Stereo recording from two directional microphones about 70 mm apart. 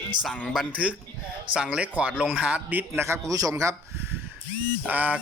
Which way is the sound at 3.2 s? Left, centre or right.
Right.